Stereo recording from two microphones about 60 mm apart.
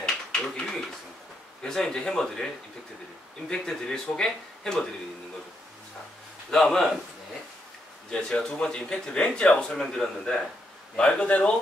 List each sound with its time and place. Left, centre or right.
0.0 s a sound: centre
1.6 s a man's voice: centre
6.5 s a man's voice: centre
8.1 s a man's voice: centre